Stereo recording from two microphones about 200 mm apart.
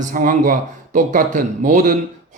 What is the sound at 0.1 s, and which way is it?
Speech, 45° right (ahead or behind).